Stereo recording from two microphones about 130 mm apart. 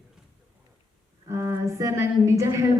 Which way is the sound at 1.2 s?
20° right (ahead or behind).